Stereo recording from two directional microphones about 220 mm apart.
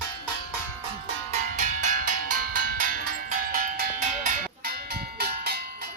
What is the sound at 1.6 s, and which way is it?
Music, 35° right (ahead or behind).